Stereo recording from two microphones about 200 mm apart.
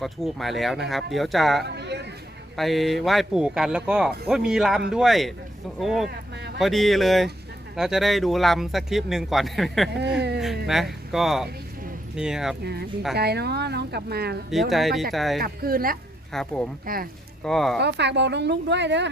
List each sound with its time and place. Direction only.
0.0 s speech: centre (ahead or behind)
1.6 s a sound: 60° right (ahead or behind)
2.6 s speech: centre (ahead or behind)
10.2 s a woman's voice: 55° right (ahead or behind)
10.7 s speech: centre (ahead or behind)
13.1 s a woman's voice: 55° right (ahead or behind)
14.7 s speech: centre (ahead or behind)
15.4 s speech: 50° right (ahead or behind)
16.3 s speech: 5° left (ahead or behind)
16.8 s speech: 45° right (ahead or behind)
17.4 s speech: centre (ahead or behind)
17.7 s a woman's voice: 55° right (ahead or behind)